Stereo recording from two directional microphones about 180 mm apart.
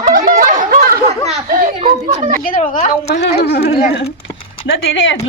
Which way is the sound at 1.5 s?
50° right (ahead or behind).